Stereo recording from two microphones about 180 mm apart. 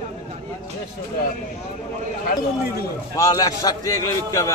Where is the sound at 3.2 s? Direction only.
20° left (ahead or behind).